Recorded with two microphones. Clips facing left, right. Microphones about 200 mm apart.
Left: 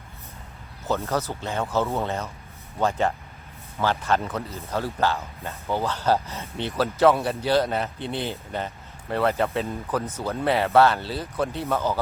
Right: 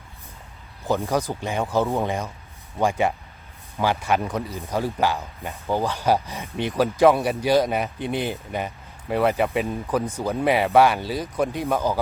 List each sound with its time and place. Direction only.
0.9 s speech: 15° right (ahead or behind)